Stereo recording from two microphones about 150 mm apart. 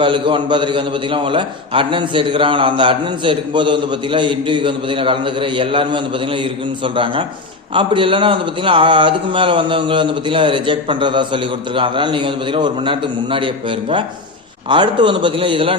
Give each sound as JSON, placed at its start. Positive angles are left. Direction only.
{"t": 0.0, "sound": "a man's voice", "side_deg": -35}